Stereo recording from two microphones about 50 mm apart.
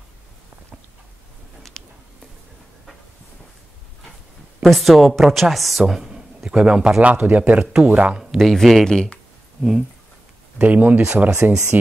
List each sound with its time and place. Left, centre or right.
1.8 s a sound: centre
4.6 s a woman's voice: centre
6.0 s a sound: centre
7.0 s speech: right
8.2 s a woman's voice: centre
8.8 s speech: centre
9.6 s speech: centre
10.6 s speech: right